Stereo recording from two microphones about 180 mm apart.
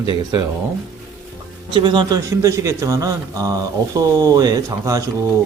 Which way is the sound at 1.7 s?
25° right (ahead or behind).